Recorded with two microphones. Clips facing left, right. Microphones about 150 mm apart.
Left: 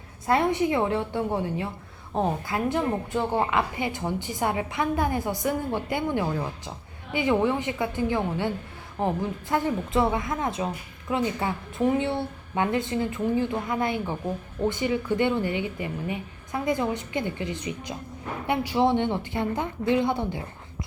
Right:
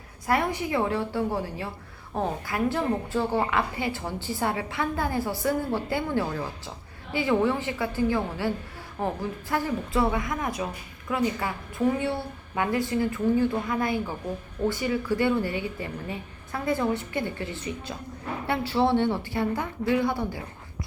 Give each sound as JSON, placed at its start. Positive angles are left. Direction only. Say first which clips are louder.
{"t": 0.3, "sound": "a woman's voice", "louder": "left 3 dB", "side_deg": 25}